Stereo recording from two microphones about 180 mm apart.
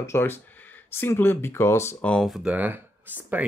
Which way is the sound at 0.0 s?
15° left (ahead or behind).